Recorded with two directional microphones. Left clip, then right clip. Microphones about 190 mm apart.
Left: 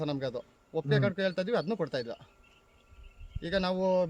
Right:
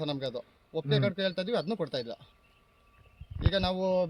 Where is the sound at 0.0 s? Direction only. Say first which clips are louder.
Even; 10° left (ahead or behind).